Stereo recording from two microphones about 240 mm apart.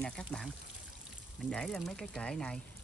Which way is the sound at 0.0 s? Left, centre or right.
Centre.